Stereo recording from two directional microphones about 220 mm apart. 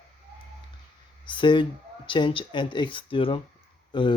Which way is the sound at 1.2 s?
20° left (ahead or behind).